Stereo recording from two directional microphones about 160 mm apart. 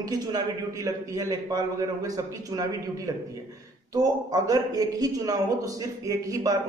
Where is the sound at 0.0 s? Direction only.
25° right (ahead or behind).